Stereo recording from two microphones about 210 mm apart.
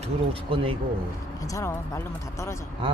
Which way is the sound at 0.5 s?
25° right (ahead or behind).